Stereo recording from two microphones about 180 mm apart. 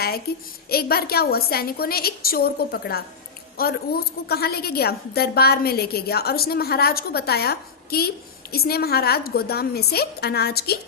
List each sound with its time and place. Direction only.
0.7 s a woman's voice: 60° left (ahead or behind)